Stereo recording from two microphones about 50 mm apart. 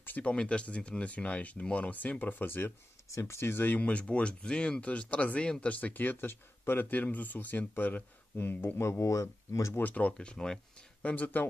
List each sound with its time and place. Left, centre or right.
0.2 s speech: left
3.2 s speech: left
3.8 s speech: left
6.2 s speech: left
8.7 s speech: left
9.8 s speech: left
10.1 s speech: centre
11.0 s speech: left